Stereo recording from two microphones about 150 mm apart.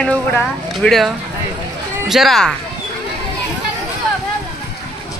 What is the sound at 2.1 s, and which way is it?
Speech, centre (ahead or behind).